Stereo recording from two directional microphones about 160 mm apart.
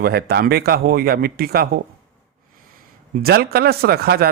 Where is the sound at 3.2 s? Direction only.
80° right.